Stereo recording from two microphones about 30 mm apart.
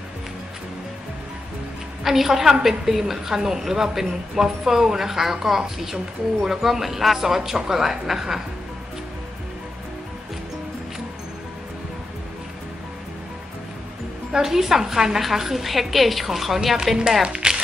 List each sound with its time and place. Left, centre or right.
2.0 s speech: centre
14.3 s a woman's voice: centre
17.2 s speech: right